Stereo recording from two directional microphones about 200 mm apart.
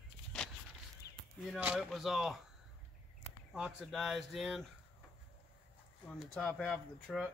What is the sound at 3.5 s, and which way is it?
Speech, centre (ahead or behind).